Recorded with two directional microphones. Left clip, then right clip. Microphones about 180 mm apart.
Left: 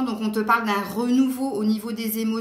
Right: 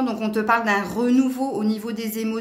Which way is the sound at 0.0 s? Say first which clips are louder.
Right 2 dB; 45° right (ahead or behind).